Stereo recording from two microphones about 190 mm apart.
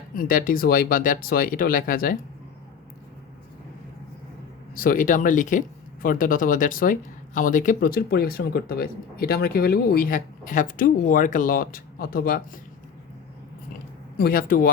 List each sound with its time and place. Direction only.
0.2 s speech: 50° left (ahead or behind)
4.7 s speech: 50° left (ahead or behind)
14.2 s speech: 50° left (ahead or behind)